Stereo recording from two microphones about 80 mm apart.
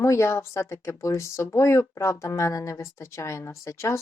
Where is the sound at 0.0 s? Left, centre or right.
Left.